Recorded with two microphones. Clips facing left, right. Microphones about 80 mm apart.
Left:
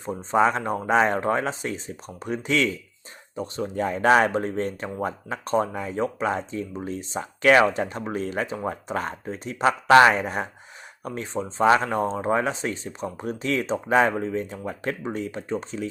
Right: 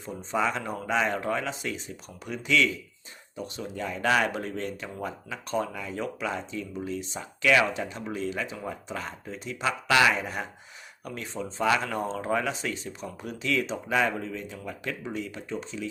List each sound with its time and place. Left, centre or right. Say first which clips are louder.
0.0 s speech: left 7 dB; left